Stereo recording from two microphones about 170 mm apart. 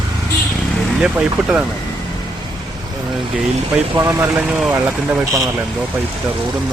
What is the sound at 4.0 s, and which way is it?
Speech, 15° right (ahead or behind).